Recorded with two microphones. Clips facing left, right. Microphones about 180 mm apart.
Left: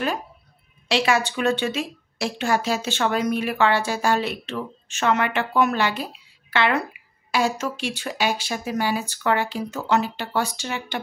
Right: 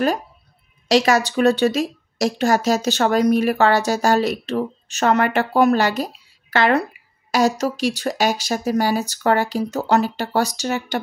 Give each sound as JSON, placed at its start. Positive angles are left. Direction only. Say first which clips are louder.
{"t": 0.8, "sound": "speech", "louder": "right 5 dB", "side_deg": -40}